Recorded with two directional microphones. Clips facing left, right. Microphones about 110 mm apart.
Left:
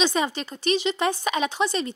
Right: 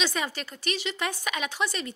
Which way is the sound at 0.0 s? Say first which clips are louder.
Left 6 dB; 25° left (ahead or behind).